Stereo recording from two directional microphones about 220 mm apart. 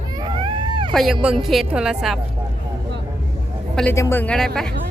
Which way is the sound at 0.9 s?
Centre (ahead or behind).